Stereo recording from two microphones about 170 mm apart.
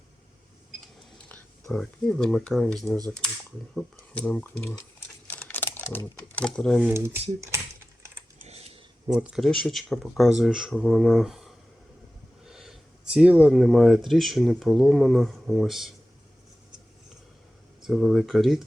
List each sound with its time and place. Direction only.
1.3 s speech: 5° left (ahead or behind)
4.1 s typing: 5° left (ahead or behind)
6.4 s speech: 5° left (ahead or behind)
6.8 s speech: 15° right (ahead or behind)
8.4 s a sound: 35° right (ahead or behind)
9.1 s speech: 5° right (ahead or behind)
12.5 s a sound: centre (ahead or behind)
14.1 s speech: centre (ahead or behind)
17.8 s speech: centre (ahead or behind)